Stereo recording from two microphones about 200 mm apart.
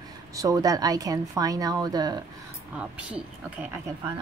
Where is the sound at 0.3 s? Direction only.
15° right (ahead or behind).